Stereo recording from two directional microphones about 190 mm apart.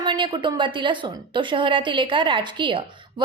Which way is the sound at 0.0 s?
25° right (ahead or behind).